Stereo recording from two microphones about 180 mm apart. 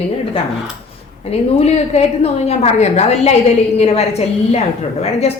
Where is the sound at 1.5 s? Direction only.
35° left (ahead or behind).